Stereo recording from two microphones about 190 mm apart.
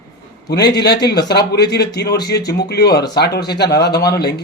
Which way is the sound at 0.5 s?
60° left (ahead or behind).